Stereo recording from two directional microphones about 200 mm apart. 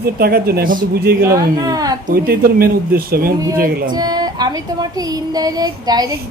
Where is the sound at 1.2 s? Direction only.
20° right (ahead or behind).